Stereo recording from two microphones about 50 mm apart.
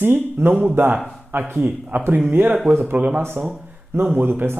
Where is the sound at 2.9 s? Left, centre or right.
Right.